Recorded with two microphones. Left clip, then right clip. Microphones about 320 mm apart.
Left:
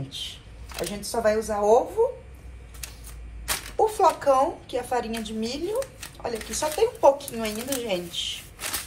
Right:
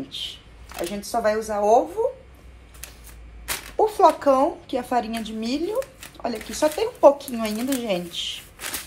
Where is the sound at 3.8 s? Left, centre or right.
Right.